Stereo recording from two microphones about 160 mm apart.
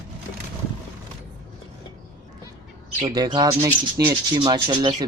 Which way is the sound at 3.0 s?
25° right (ahead or behind).